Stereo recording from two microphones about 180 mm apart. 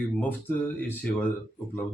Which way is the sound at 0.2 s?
10° left (ahead or behind).